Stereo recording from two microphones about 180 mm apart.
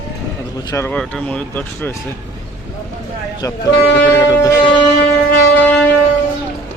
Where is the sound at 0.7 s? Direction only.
15° left (ahead or behind).